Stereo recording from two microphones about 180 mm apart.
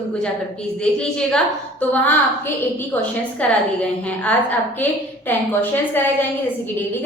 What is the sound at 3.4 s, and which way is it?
A woman's voice, 5° left (ahead or behind).